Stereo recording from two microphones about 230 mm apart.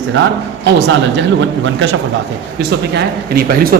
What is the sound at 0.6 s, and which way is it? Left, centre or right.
A man's voice, right.